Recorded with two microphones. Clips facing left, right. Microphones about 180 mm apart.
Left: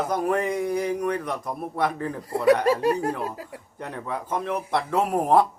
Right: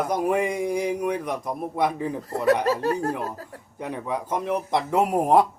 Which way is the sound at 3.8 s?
10° right (ahead or behind).